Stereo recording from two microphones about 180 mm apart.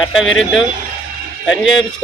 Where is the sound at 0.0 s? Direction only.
Centre (ahead or behind).